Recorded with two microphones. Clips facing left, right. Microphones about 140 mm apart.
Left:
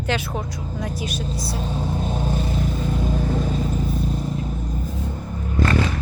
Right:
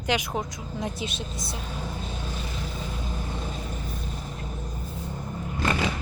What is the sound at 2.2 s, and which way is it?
Vehicle, 50° left (ahead or behind).